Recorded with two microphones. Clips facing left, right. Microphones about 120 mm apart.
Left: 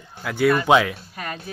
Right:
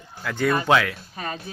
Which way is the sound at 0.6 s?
20° left (ahead or behind).